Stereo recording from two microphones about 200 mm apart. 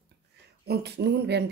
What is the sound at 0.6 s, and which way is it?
Speech, 55° right (ahead or behind).